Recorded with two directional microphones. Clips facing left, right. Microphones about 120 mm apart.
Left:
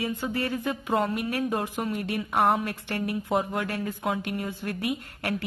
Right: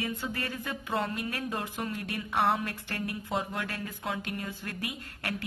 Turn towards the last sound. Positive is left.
turn(degrees=20)  # may be behind; listen again after turning